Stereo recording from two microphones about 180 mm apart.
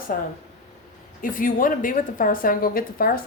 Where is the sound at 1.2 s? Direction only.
50° left (ahead or behind).